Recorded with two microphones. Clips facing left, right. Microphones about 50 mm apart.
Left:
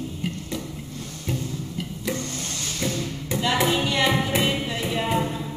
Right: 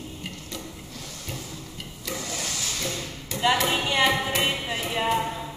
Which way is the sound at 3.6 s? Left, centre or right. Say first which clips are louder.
Left 1 dB; centre.